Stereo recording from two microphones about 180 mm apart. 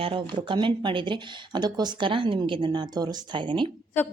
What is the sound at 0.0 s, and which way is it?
Speech, 30° right (ahead or behind).